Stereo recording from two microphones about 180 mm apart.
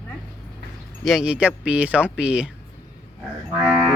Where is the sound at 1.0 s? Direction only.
Centre (ahead or behind).